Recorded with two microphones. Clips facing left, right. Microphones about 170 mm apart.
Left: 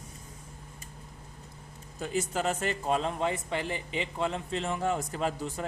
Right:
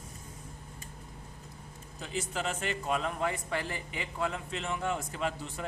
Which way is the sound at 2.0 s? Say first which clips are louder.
Left 5 dB; 45° left (ahead or behind).